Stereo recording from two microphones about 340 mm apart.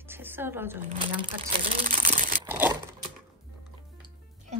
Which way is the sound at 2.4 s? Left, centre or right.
Centre.